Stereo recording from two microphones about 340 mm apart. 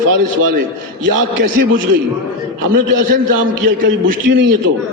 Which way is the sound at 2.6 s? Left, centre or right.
Right.